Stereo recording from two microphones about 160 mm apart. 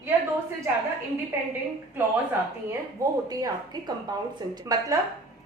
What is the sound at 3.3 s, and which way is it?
A woman's voice, 25° right (ahead or behind).